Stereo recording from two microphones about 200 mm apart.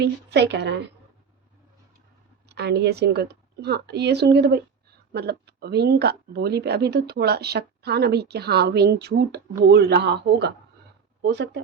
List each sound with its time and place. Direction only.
0.0 s a woman's voice: 55° right (ahead or behind)
2.5 s a woman's voice: 55° right (ahead or behind)